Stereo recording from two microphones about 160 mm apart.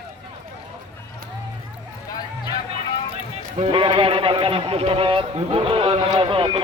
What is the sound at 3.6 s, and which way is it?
A man's voice, 35° right (ahead or behind).